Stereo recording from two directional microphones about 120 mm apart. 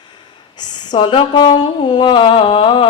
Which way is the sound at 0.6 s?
35° left (ahead or behind).